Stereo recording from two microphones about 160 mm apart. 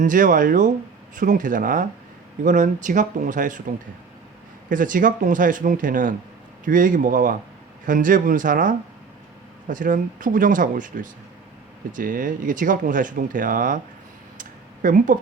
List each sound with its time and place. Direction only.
0.0 s speech: 55° right (ahead or behind)
4.7 s speech: 55° right (ahead or behind)
14.3 s a sound: 55° right (ahead or behind)